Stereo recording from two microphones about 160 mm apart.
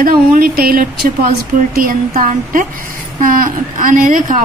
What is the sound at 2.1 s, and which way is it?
A woman's voice, 55° right (ahead or behind).